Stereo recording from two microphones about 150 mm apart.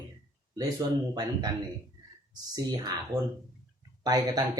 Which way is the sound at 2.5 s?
25° right (ahead or behind).